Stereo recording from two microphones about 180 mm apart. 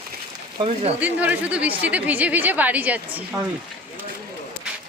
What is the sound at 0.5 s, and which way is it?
Speech, 35° right (ahead or behind).